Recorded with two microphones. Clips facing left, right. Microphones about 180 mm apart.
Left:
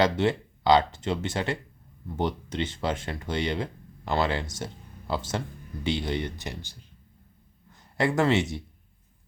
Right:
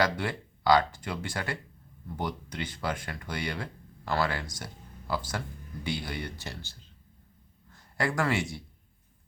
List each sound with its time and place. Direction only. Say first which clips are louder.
0.0 s speech: left 5 dB; 25° left (ahead or behind)